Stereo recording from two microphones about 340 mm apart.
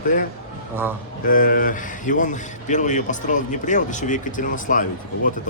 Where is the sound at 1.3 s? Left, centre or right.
Left.